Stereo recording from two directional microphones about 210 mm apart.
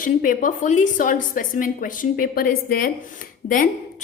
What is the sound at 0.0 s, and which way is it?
A woman's voice, 40° left (ahead or behind).